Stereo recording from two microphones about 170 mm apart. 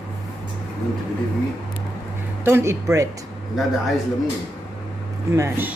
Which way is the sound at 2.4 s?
15° right (ahead or behind).